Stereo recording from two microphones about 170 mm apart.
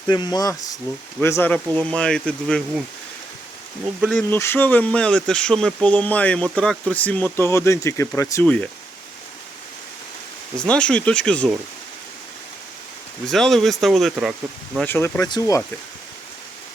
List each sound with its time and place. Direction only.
0.1 s speech: 25° left (ahead or behind); by 2.8 s 5° left (ahead or behind)
4.3 s speech: 15° left (ahead or behind)
10.6 s speech: 5° left (ahead or behind)
13.2 s speech: centre (ahead or behind)
14.8 s speech: 15° left (ahead or behind)